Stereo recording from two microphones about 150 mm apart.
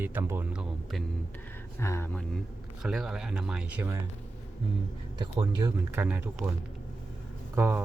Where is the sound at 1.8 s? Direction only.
20° left (ahead or behind).